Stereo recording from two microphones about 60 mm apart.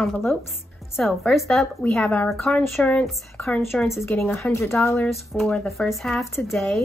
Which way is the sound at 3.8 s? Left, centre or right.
Left.